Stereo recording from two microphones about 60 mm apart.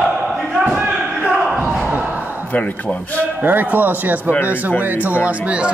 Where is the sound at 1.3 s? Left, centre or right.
Centre.